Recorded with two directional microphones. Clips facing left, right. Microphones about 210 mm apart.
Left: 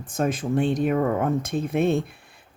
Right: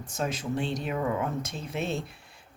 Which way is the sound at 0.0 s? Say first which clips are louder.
Left 7 dB; 50° left (ahead or behind).